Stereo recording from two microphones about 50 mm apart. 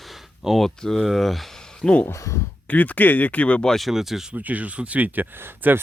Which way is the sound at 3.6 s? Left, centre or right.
Centre.